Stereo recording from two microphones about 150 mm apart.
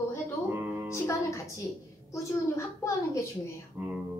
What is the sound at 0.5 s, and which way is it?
Music, 10° right (ahead or behind).